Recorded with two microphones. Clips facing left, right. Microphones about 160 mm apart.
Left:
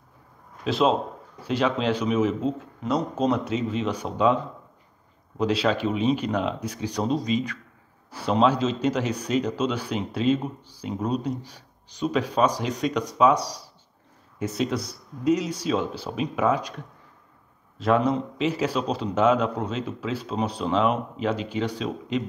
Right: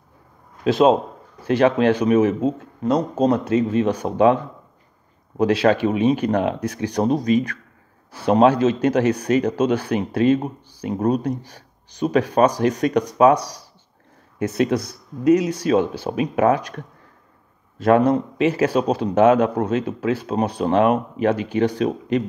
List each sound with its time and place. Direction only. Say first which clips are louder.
1.6 s a man's voice: right 7 dB; 55° right (ahead or behind)
2.8 s speech: right 6 dB; 40° right (ahead or behind)
3.5 s speech: right 8 dB; 50° right (ahead or behind)
5.4 s a man's voice: right 6 dB; 60° right (ahead or behind)